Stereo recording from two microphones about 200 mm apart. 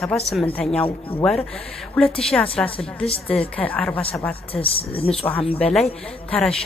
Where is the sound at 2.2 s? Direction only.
5° left (ahead or behind).